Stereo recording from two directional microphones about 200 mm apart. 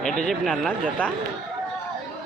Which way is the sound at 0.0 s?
5° left (ahead or behind).